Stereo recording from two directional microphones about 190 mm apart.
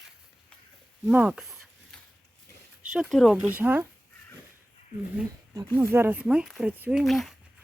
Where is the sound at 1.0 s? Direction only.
5° right (ahead or behind).